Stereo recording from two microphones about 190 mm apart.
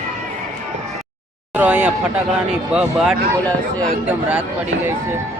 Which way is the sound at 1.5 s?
5° right (ahead or behind).